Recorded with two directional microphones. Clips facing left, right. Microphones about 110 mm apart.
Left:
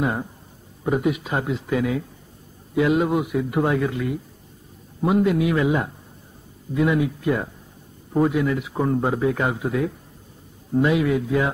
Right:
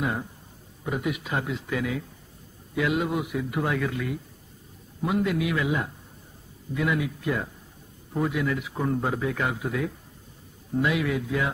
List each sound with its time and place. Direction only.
0.0 s speech: 30° left (ahead or behind)